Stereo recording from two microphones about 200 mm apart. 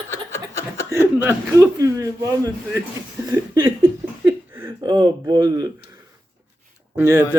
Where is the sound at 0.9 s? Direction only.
10° right (ahead or behind).